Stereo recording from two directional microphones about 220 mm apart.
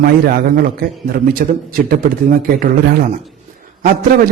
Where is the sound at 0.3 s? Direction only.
40° right (ahead or behind).